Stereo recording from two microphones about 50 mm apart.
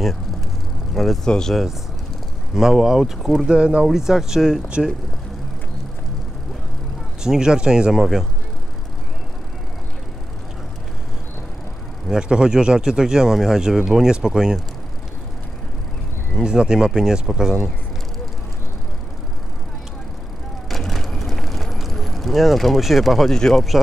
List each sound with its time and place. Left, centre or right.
0.9 s speech: centre
1.2 s speech: centre
1.5 s speech: centre
3.4 s speech: right
3.8 s speech: centre
7.2 s speech: centre
12.1 s speech: centre
16.4 s speech: centre
20.7 s vehicle: centre
23.3 s speech: centre